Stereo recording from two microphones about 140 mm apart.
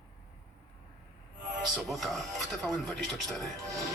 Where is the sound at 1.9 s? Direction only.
Centre (ahead or behind).